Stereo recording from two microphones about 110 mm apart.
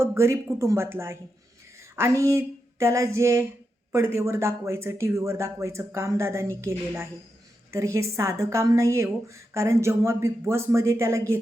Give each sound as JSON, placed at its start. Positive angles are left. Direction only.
{"t": 0.0, "sound": "a woman's voice", "side_deg": -25}